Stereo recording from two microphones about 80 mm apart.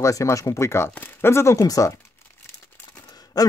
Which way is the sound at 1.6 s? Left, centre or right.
Left.